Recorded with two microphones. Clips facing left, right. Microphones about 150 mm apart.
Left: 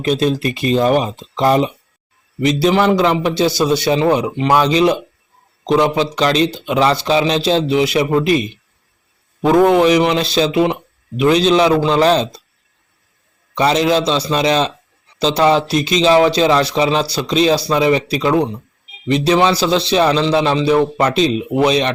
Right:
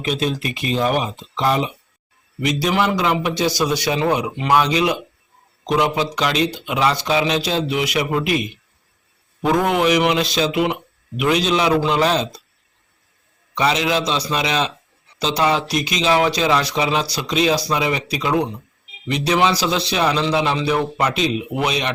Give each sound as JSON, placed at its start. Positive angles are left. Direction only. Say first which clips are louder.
{"t": 0.0, "sound": "a man's voice", "louder": "left 6 dB", "side_deg": 40}
{"t": 13.6, "sound": "a man's voice", "louder": "left 5 dB", "side_deg": 35}